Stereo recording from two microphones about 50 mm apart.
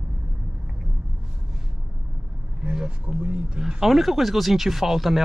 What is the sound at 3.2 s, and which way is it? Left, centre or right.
Speech, right.